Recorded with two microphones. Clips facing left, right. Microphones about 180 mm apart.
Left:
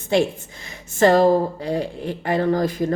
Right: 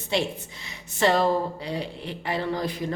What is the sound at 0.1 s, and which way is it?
A woman's voice, 50° left (ahead or behind).